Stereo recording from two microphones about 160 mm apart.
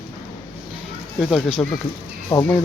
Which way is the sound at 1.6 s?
10° left (ahead or behind).